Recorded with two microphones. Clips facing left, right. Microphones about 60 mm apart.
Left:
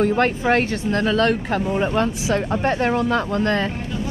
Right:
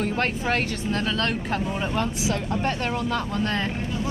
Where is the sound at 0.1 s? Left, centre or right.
Left.